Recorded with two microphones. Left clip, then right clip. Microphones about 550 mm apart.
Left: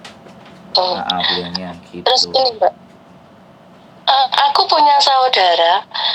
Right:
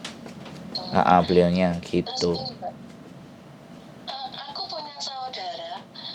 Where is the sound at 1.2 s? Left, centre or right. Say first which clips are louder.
Left 1 dB; left.